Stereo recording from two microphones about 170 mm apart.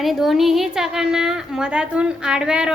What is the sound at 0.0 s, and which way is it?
A woman's voice, centre (ahead or behind).